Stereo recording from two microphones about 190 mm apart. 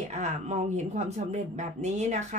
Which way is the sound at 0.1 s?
35° right (ahead or behind).